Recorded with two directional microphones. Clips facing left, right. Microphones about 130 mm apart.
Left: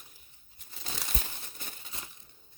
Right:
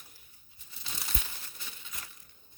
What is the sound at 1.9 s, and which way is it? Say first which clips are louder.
Crushing: left 2 dB; 25° left (ahead or behind).